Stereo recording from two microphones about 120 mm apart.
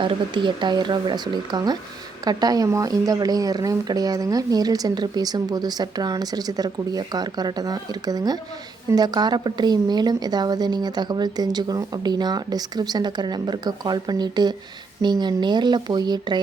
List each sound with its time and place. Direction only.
0.0 s speech: 40° right (ahead or behind)